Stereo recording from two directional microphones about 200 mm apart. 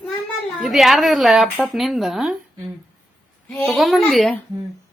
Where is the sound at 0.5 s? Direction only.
Centre (ahead or behind).